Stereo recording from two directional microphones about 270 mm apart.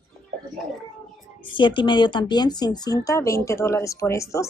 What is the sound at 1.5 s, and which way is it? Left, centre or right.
Speech, centre.